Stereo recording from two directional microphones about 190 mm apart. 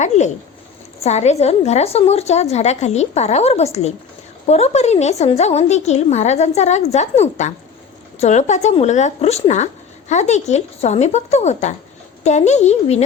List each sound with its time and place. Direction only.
1.0 s a woman's voice: 35° left (ahead or behind)